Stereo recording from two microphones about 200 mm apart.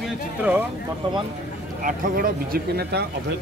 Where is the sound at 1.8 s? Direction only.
45° right (ahead or behind).